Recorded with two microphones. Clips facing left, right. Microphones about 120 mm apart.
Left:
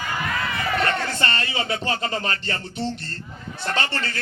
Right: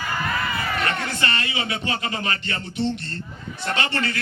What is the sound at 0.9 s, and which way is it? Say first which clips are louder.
A man's voice: left 1 dB; 30° left (ahead or behind).